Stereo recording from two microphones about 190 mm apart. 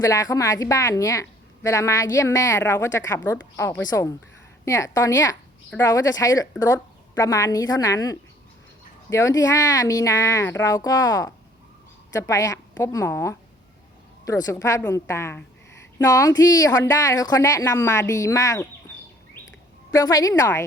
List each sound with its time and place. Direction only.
0.0 s a woman's voice: 20° left (ahead or behind)
19.9 s a woman's voice: 20° left (ahead or behind)